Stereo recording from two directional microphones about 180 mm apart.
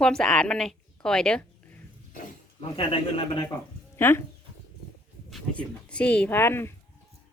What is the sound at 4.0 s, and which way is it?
Speech, 15° left (ahead or behind).